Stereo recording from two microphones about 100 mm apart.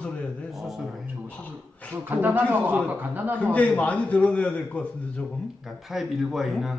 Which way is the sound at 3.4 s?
15° left (ahead or behind).